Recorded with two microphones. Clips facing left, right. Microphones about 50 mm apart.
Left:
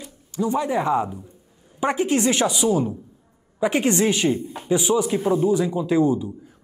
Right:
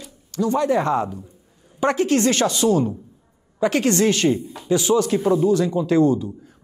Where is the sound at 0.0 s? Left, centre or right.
Centre.